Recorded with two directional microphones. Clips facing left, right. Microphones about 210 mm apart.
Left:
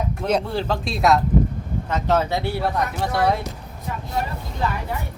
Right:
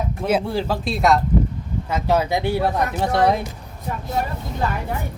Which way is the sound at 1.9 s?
10° right (ahead or behind).